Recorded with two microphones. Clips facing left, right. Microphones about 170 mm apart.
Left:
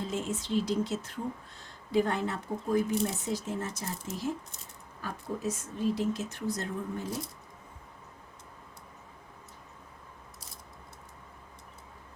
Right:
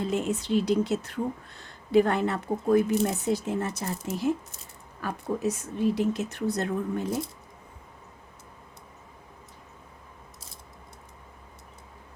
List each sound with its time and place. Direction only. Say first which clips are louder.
0.0 s speech: right 6 dB; 65° right (ahead or behind)